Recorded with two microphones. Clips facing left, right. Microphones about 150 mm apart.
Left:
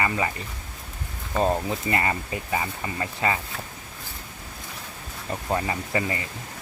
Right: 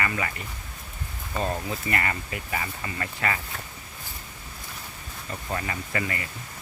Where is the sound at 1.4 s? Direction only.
25° left (ahead or behind).